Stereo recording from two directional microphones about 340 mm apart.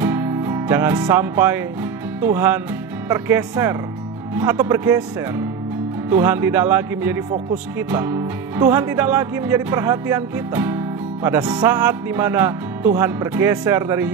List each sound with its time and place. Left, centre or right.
0.0 s music: centre
2.2 s speech: centre
6.0 s speech: centre